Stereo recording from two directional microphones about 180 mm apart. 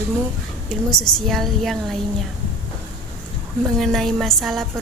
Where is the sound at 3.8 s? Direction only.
Centre (ahead or behind).